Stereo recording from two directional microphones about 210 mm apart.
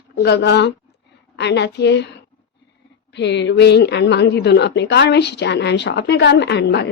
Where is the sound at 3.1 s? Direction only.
55° left (ahead or behind).